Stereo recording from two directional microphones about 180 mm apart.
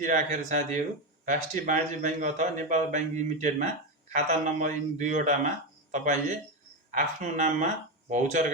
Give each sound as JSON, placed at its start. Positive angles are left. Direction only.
{"t": 0.0, "sound": "speech", "side_deg": -45}